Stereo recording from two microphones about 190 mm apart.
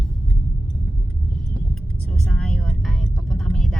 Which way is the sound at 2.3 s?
5° left (ahead or behind).